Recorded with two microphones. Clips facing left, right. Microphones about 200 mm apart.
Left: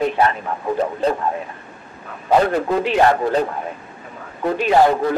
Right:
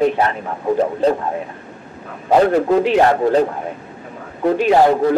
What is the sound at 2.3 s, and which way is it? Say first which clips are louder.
A man's voice: right 4 dB; 30° right (ahead or behind).